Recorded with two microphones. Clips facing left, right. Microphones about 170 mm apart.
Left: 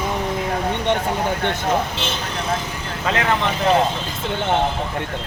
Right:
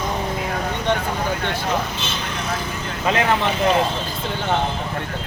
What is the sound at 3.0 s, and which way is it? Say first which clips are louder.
Speech: right 1 dB; 15° right (ahead or behind).